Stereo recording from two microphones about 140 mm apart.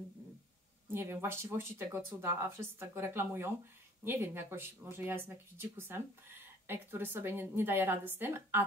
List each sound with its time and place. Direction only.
0.9 s speech: 15° right (ahead or behind)